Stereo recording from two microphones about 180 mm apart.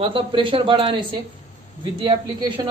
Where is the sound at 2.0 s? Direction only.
25° right (ahead or behind).